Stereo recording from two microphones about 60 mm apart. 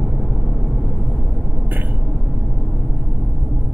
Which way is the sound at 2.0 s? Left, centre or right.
Centre.